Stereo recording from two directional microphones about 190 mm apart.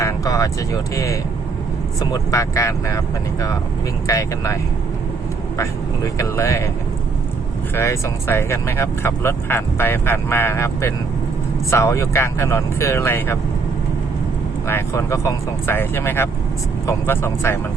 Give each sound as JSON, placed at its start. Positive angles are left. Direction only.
{"t": 0.0, "sound": "speech", "side_deg": 20}
{"t": 4.0, "sound": "speech", "side_deg": 15}
{"t": 6.1, "sound": "speech", "side_deg": 15}
{"t": 7.8, "sound": "speech", "side_deg": 15}
{"t": 14.7, "sound": "speech", "side_deg": 15}